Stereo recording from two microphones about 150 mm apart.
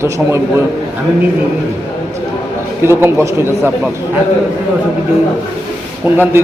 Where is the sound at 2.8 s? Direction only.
15° right (ahead or behind).